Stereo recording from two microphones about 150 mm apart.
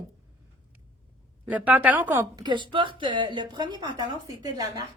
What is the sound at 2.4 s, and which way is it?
A woman's voice, 30° right (ahead or behind).